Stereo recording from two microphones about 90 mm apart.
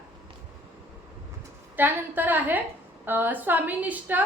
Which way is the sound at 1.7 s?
20° right (ahead or behind).